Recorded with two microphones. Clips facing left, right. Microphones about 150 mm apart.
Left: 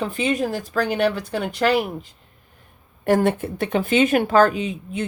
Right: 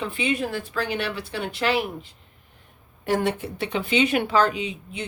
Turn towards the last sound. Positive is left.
turn(degrees=45)  # may be behind; listen again after turning